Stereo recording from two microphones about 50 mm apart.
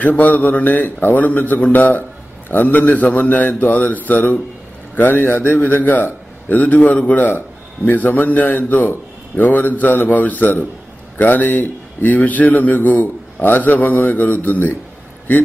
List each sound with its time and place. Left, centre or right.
0.0 s a man's voice: left